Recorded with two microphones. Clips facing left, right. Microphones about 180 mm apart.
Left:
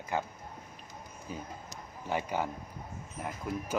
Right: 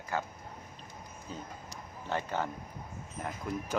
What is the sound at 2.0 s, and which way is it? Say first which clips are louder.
Speech: left 1 dB; 10° left (ahead or behind).